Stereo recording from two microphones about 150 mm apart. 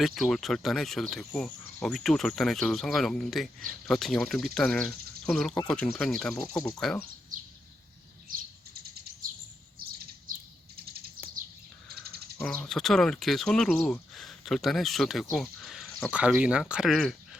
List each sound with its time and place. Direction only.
0.0 s speech: centre (ahead or behind)
9.7 s bird: 80° right
12.6 s speech: centre (ahead or behind)